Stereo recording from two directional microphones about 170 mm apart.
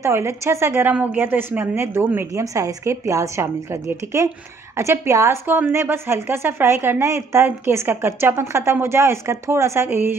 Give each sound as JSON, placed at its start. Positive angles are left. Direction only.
{"t": 0.0, "sound": "a woman's voice", "side_deg": -15}